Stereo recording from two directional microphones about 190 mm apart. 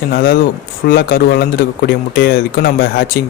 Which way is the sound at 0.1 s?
50° left (ahead or behind).